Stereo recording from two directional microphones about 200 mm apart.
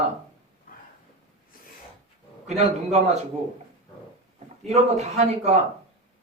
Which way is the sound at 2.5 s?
35° right (ahead or behind).